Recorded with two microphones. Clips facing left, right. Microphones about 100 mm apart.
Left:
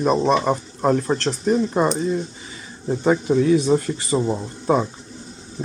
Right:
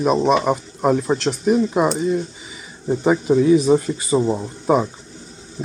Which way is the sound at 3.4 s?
15° right (ahead or behind).